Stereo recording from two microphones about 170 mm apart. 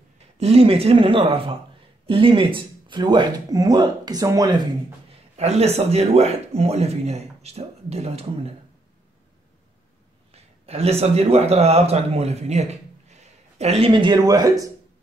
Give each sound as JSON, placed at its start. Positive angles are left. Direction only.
{"t": 0.4, "sound": "speech", "side_deg": -35}
{"t": 5.3, "sound": "speech", "side_deg": -40}
{"t": 10.3, "sound": "a man's voice", "side_deg": -35}